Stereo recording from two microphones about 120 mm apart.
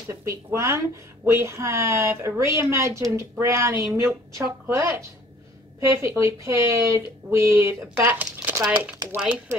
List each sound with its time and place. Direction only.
0.1 s a woman's voice: 25° right (ahead or behind); by 9.4 s 10° right (ahead or behind)